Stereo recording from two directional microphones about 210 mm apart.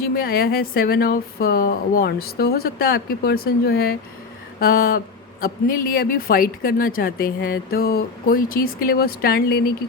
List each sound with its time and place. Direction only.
0.0 s speech: 45° left (ahead or behind)